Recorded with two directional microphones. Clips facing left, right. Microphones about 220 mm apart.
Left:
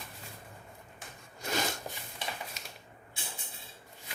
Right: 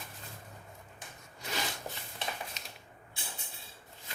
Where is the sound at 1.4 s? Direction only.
45° left (ahead or behind).